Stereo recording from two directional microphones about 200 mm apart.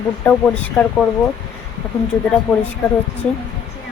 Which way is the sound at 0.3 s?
10° left (ahead or behind).